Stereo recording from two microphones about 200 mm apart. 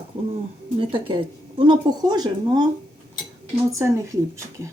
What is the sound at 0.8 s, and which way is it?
Speech, 25° right (ahead or behind).